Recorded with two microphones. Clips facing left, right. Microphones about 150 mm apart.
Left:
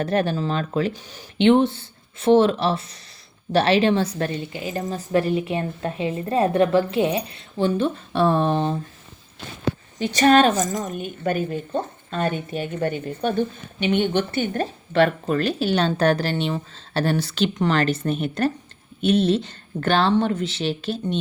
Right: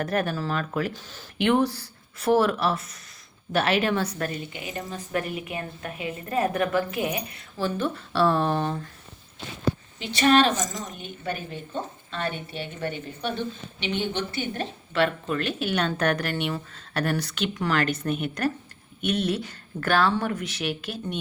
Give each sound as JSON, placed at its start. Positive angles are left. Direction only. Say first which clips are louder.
{"t": 0.0, "sound": "a woman's voice", "louder": "left 4 dB", "side_deg": 30}
{"t": 10.0, "sound": "a woman's voice", "louder": "left 4 dB", "side_deg": 45}